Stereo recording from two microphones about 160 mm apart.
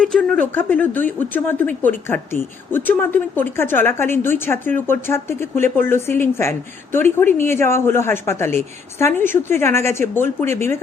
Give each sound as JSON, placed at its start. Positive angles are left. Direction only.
{"t": 0.0, "sound": "speech", "side_deg": 5}